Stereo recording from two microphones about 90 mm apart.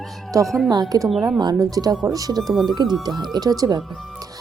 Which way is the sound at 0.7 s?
45° right (ahead or behind).